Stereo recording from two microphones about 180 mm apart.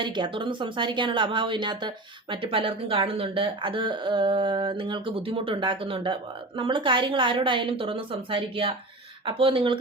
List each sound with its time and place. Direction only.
0.0 s speech: 25° right (ahead or behind)